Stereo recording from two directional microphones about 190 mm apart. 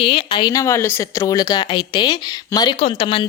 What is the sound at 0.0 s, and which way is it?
Speech, 30° left (ahead or behind).